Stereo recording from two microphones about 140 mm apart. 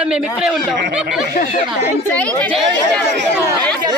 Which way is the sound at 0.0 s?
5° right (ahead or behind).